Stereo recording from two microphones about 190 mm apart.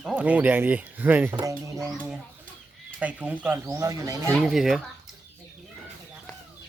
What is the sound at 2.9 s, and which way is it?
Speech, 5° right (ahead or behind).